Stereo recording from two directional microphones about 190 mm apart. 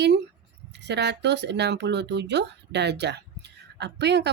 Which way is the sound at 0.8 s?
65° right (ahead or behind).